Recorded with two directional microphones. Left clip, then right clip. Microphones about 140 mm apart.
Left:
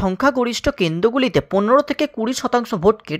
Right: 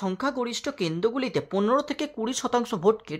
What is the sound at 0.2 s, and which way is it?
Speech, 40° left (ahead or behind).